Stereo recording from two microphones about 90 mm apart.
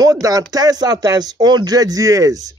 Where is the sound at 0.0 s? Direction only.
40° right (ahead or behind).